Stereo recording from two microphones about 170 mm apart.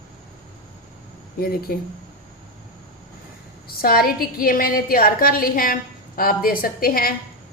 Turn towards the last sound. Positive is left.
turn(degrees=60)  # may be behind; listen again after turning